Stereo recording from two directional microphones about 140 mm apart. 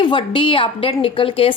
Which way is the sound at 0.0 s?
35° left (ahead or behind).